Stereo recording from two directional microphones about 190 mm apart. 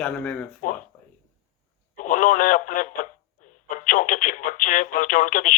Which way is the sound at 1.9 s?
45° left (ahead or behind).